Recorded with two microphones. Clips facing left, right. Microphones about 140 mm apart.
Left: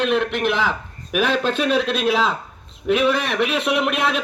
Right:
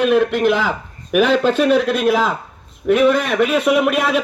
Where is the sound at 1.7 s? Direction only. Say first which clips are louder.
Right 4 dB; 20° left (ahead or behind).